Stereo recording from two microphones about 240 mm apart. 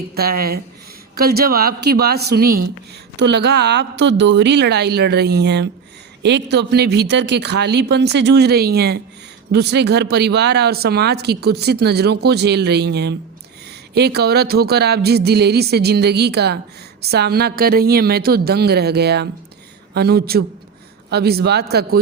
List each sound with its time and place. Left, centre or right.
0.2 s a woman's voice: right